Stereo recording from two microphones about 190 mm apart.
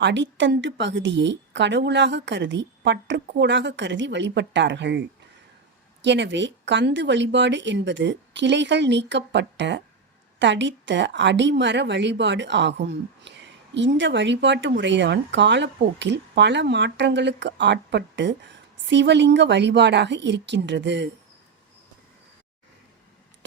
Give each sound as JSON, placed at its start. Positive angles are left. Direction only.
{"t": 0.0, "sound": "a woman's voice", "side_deg": -70}